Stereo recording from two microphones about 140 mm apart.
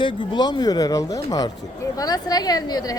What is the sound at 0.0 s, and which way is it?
Speech, 35° left (ahead or behind).